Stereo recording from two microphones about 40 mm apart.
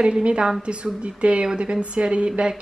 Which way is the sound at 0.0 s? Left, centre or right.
Right.